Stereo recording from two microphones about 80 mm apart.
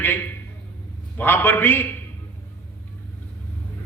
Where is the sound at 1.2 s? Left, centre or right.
Left.